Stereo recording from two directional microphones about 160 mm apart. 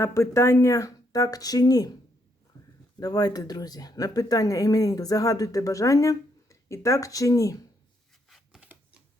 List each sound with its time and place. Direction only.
0.0 s speech: 15° left (ahead or behind)
3.0 s speech: 25° left (ahead or behind)
8.3 s a sound: centre (ahead or behind)